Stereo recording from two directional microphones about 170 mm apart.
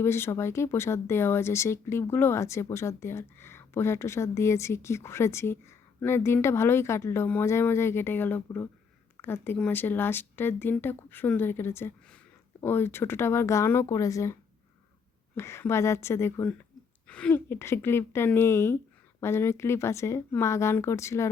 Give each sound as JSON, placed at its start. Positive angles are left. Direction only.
{"t": 0.0, "sound": "speech", "side_deg": 15}
{"t": 15.4, "sound": "speech", "side_deg": 15}